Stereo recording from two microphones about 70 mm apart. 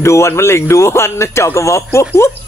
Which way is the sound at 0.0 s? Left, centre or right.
Left.